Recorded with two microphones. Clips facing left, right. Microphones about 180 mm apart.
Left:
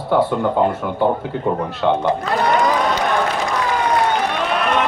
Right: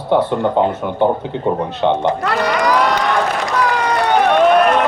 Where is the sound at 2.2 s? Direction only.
80° right.